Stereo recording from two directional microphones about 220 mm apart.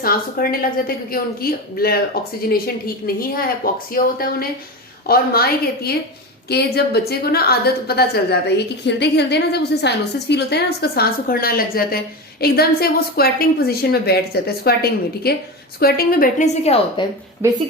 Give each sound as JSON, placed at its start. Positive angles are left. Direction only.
{"t": 0.0, "sound": "a woman's voice", "side_deg": 40}
{"t": 17.4, "sound": "speech", "side_deg": -10}